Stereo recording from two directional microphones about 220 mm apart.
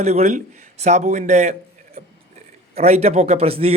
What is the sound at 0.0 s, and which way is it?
A man's voice, 30° right (ahead or behind).